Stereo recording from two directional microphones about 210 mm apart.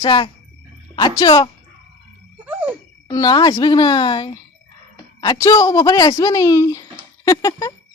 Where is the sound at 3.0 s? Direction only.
20° left (ahead or behind).